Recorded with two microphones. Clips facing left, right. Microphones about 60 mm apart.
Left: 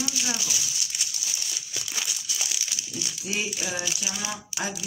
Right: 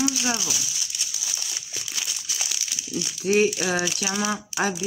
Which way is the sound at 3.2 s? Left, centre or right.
Right.